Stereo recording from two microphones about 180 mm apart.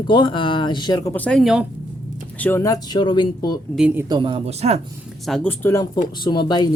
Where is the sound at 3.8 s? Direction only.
5° right (ahead or behind).